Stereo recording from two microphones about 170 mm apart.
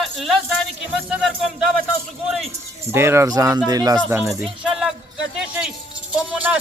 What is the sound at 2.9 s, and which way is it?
Speech, 15° right (ahead or behind).